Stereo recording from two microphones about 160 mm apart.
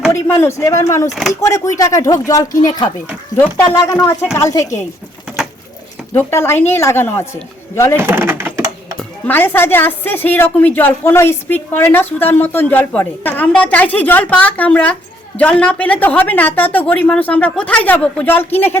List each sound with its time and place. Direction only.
0.1 s speech: 15° left (ahead or behind)
3.3 s speech: 10° left (ahead or behind)
3.8 s speech: 20° left (ahead or behind)
6.1 s speech: 15° left (ahead or behind)
8.0 s typing: 15° right (ahead or behind)
9.0 s speech: 10° left (ahead or behind)